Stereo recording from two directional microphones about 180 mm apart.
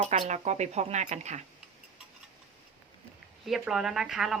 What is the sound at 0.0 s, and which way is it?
Speech, 40° right (ahead or behind).